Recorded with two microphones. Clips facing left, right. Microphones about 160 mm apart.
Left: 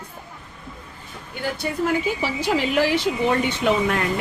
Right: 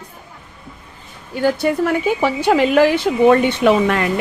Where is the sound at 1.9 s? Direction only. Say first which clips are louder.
Right 6 dB; 60° right (ahead or behind).